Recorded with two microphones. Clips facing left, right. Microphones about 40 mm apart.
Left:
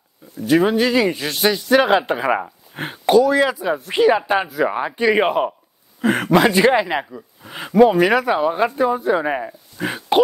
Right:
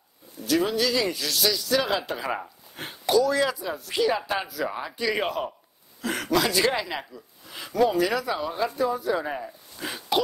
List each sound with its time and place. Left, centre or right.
0.5 s speech: left